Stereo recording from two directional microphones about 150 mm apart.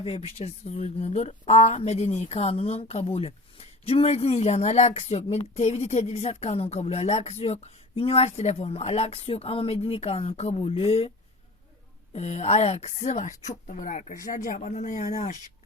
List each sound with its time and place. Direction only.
0.0 s speech: 40° left (ahead or behind)
12.1 s speech: 45° left (ahead or behind)